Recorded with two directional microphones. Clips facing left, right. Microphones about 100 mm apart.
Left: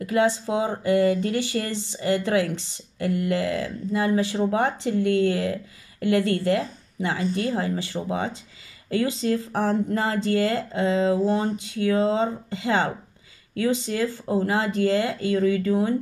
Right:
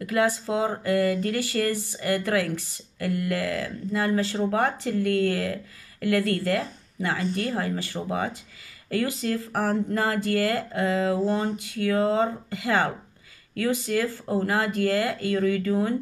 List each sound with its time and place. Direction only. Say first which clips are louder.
0.0 s speech: left 2 dB; 25° left (ahead or behind)